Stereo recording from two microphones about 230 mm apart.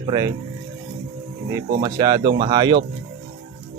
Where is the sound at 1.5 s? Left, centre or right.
Centre.